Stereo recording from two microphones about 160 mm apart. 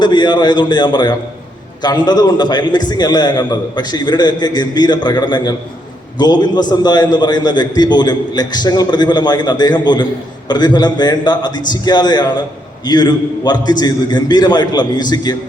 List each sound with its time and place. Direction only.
0.0 s a man's voice: 25° left (ahead or behind)